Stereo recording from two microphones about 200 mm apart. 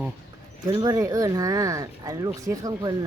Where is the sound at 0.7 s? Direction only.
20° right (ahead or behind).